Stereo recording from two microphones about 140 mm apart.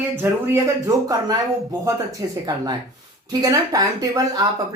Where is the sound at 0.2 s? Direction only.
20° right (ahead or behind).